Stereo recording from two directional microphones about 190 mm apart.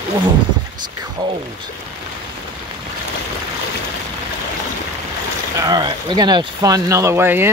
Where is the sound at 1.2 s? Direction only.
20° right (ahead or behind).